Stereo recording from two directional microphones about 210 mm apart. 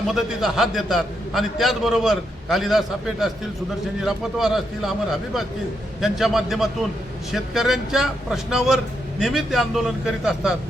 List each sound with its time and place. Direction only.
0.1 s a man's voice: centre (ahead or behind)